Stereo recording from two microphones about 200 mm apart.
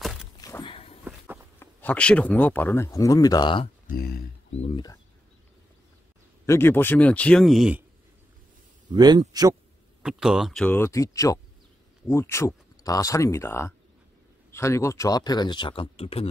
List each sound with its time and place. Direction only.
0.4 s walk: 15° left (ahead or behind)
1.0 s walk: 10° right (ahead or behind)
1.6 s speech: 10° left (ahead or behind); by 3.7 s 25° left (ahead or behind)
3.9 s a sound: 50° left (ahead or behind)
4.6 s a sound: 25° left (ahead or behind)
6.4 s speech: 15° left (ahead or behind); by 7.8 s 5° right (ahead or behind)
8.9 s a man's voice: 20° right (ahead or behind)
10.0 s speech: 5° right (ahead or behind); by 16.3 s 30° left (ahead or behind)